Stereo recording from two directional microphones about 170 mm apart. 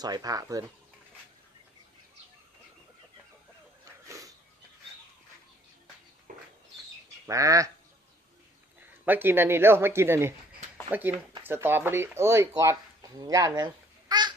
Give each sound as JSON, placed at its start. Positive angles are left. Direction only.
{"t": 0.0, "sound": "speech", "side_deg": -20}
{"t": 6.3, "sound": "a sound", "side_deg": -55}
{"t": 7.3, "sound": "speech", "side_deg": -20}
{"t": 8.8, "sound": "speech", "side_deg": -10}
{"t": 10.9, "sound": "speech", "side_deg": -45}
{"t": 11.4, "sound": "speech", "side_deg": -15}